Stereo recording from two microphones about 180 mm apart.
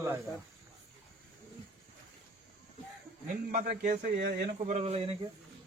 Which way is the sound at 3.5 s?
55° right (ahead or behind).